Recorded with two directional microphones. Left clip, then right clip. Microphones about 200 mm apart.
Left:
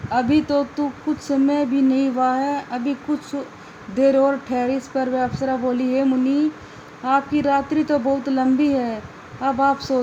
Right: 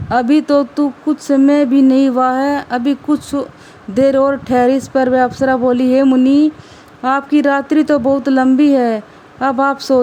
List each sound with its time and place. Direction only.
0.1 s speech: 60° right (ahead or behind)